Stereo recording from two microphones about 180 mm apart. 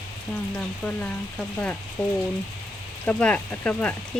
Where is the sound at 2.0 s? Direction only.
5° left (ahead or behind).